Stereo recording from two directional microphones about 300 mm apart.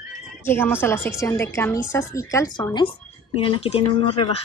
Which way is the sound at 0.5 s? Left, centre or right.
Centre.